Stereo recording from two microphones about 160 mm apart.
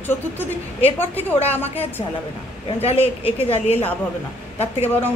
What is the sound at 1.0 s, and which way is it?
Speech, 10° left (ahead or behind).